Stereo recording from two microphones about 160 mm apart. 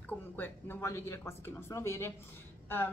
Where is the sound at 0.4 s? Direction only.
15° left (ahead or behind).